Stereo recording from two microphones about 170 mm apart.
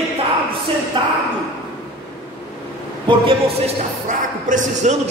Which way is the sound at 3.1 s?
30° right (ahead or behind).